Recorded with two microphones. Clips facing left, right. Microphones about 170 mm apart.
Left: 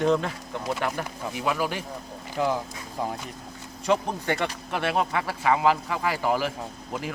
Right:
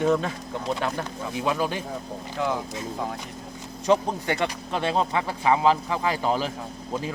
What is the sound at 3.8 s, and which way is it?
Speech, 15° right (ahead or behind).